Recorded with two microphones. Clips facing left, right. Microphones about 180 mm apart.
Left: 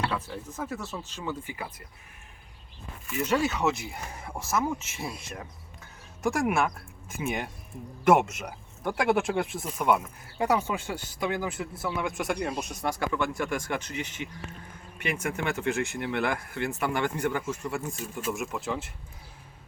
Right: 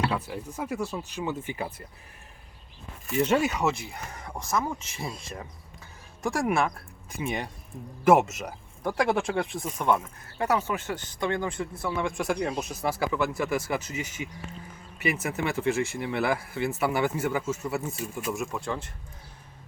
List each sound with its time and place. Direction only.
0.0 s speech: 15° right (ahead or behind)
3.1 s speech: 30° right (ahead or behind)
3.6 s speech: centre (ahead or behind)